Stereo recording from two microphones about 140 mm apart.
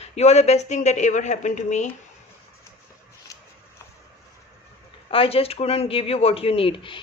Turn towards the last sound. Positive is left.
turn(degrees=40)  # may be behind; listen again after turning